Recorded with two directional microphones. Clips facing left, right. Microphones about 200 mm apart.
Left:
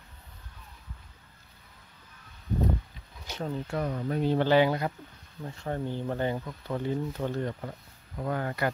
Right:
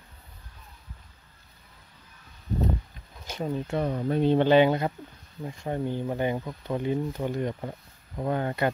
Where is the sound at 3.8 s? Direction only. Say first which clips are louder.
Right 4 dB; 30° right (ahead or behind).